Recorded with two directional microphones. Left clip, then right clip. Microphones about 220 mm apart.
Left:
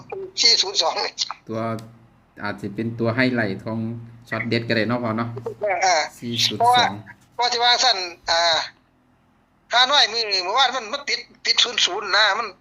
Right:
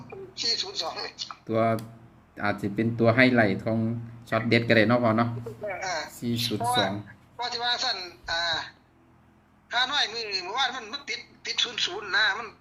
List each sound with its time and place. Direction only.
0.1 s a woman's voice: 20° left (ahead or behind)
1.5 s speech: centre (ahead or behind)
5.6 s a man's voice: 20° left (ahead or behind)